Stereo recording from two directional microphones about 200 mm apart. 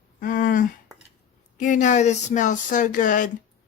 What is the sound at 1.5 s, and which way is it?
Speech, 40° left (ahead or behind).